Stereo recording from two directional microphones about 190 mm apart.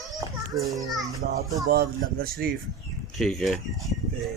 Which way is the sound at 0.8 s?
15° right (ahead or behind).